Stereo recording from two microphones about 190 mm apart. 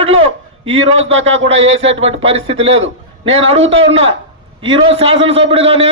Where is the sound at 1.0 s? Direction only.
90° right.